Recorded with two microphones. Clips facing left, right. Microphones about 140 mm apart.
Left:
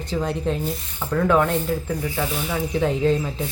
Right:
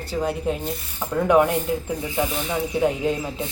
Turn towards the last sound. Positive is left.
turn(degrees=-15)  # may be behind; listen again after turning